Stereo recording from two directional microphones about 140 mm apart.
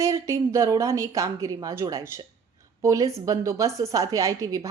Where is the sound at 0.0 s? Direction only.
20° right (ahead or behind).